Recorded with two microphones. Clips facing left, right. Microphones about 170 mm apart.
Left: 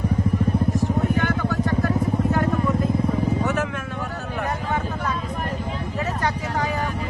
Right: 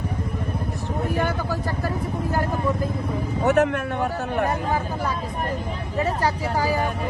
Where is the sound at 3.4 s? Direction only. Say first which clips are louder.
Right 5 dB; 60° right (ahead or behind).